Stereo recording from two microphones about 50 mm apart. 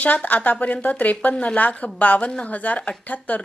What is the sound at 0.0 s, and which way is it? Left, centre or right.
A woman's voice, left.